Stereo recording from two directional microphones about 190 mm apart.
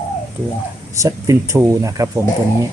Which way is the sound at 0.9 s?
15° right (ahead or behind).